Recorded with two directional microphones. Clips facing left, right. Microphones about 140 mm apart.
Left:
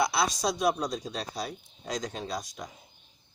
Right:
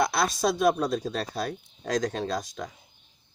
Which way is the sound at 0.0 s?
50° right (ahead or behind).